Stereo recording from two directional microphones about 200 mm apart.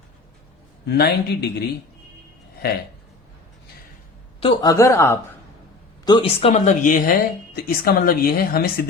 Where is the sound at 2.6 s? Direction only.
55° left (ahead or behind).